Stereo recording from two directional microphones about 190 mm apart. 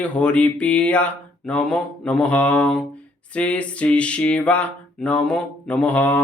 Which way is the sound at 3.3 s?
5° left (ahead or behind).